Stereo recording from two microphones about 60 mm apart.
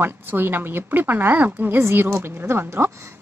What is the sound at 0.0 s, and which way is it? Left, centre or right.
A woman's voice, right.